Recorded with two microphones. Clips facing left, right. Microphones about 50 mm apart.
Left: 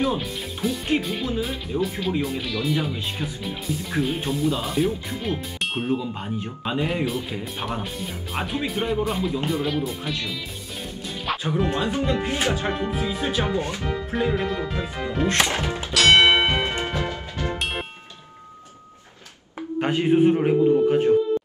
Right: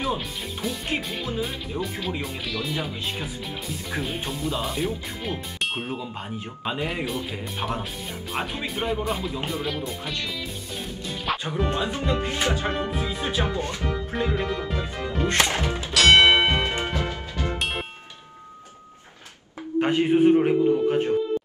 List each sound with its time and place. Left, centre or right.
0.0 s speech: centre
11.3 s music: centre
11.9 s speech: centre
14.1 s speech: centre
15.9 s music: centre
19.8 s speech: centre